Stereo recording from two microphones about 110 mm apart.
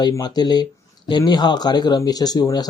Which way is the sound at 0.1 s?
40° left (ahead or behind).